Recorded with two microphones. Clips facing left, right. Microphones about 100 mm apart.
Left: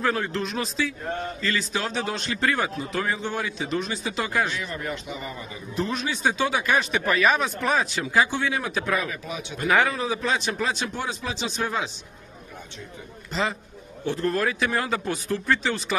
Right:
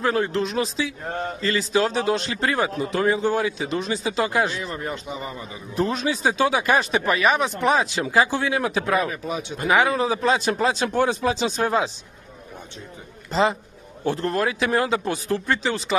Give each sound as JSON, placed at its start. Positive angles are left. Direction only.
{"t": 0.0, "sound": "a man's voice", "side_deg": -30}
{"t": 7.1, "sound": "a man's voice", "side_deg": -20}
{"t": 10.9, "sound": "speech", "side_deg": -55}
{"t": 11.4, "sound": "a man's voice", "side_deg": -40}
{"t": 13.3, "sound": "a man's voice", "side_deg": -30}